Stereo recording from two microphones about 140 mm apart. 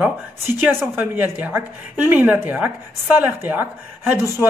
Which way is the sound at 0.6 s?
15° right (ahead or behind).